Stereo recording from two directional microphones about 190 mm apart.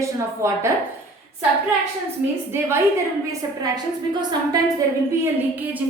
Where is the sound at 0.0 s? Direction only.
15° right (ahead or behind).